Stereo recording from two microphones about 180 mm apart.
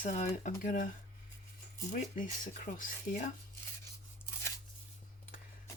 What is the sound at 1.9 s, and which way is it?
Speech, 45° left (ahead or behind).